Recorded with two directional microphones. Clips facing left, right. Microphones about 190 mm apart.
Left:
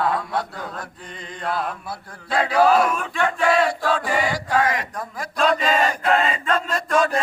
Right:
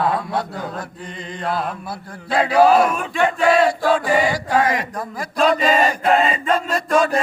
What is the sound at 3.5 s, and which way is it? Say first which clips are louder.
Chant: right 5 dB; centre (ahead or behind).